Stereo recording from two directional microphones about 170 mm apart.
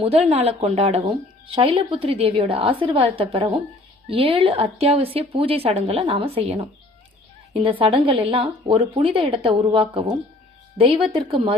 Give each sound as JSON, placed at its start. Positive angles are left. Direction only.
{"t": 0.0, "sound": "speech", "side_deg": -35}
{"t": 7.5, "sound": "speech", "side_deg": -30}